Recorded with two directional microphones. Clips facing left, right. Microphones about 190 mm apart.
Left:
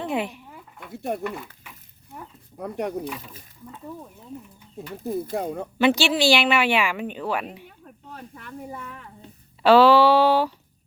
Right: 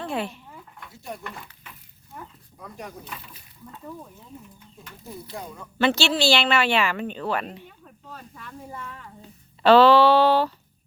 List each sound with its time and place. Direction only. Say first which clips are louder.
0.0 s a sound: left 2 dB; 15° left (ahead or behind)
0.9 s speech: left 10 dB; 55° left (ahead or behind)
2.6 s speech: left 11 dB; 60° left (ahead or behind)
5.0 s speech: left 11 dB; 50° left (ahead or behind)
5.8 s a woman's voice: left 2 dB; 15° left (ahead or behind)